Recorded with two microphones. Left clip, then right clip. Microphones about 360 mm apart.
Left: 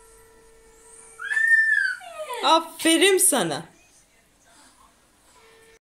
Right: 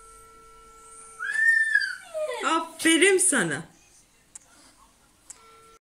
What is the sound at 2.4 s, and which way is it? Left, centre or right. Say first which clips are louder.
A woman's voice: left 5 dB; centre.